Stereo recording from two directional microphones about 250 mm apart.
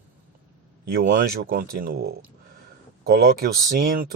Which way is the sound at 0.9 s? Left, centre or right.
Right.